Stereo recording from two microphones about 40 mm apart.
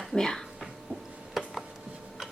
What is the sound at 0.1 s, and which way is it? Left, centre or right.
Speech, centre.